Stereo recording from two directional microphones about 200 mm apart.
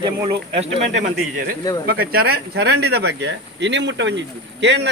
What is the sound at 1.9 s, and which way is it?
Speech, 50° right (ahead or behind).